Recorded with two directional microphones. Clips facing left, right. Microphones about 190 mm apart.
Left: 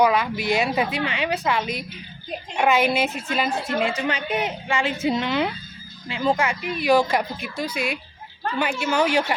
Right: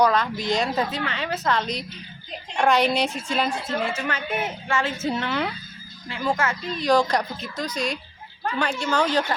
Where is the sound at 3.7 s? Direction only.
15° left (ahead or behind).